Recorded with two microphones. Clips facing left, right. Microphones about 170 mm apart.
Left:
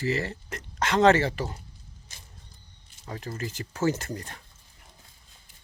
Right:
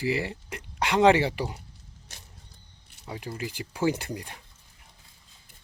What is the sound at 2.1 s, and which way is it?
Vehicle, 70° right (ahead or behind).